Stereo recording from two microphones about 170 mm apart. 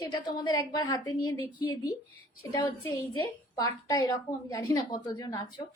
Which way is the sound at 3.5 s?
20° left (ahead or behind).